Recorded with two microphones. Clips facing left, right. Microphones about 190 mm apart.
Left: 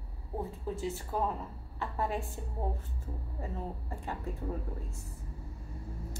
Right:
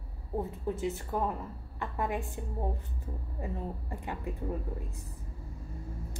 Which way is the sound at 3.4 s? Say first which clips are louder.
Right 2 dB; 15° right (ahead or behind).